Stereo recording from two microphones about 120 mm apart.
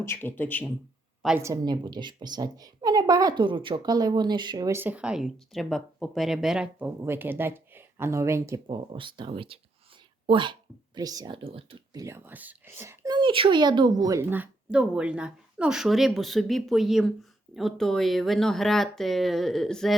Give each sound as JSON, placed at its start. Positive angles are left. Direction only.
{"t": 0.0, "sound": "a man's voice", "side_deg": 20}
{"t": 1.4, "sound": "a woman's voice", "side_deg": -30}
{"t": 4.7, "sound": "speech", "side_deg": -15}
{"t": 8.6, "sound": "speech", "side_deg": -45}
{"t": 11.3, "sound": "speech", "side_deg": -45}
{"t": 11.9, "sound": "speech", "side_deg": -25}
{"t": 13.1, "sound": "speech", "side_deg": -40}